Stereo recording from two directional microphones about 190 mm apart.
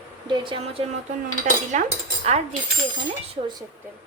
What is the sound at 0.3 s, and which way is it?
Speech, 25° right (ahead or behind).